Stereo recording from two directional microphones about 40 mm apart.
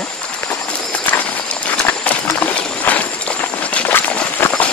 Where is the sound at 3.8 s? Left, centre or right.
Left.